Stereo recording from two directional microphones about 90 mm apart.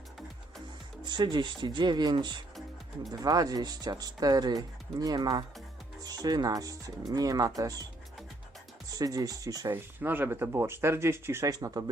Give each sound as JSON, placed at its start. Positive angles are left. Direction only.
{"t": 1.0, "sound": "speech", "side_deg": -55}
{"t": 9.0, "sound": "speech", "side_deg": -40}
{"t": 10.0, "sound": "speech", "side_deg": -25}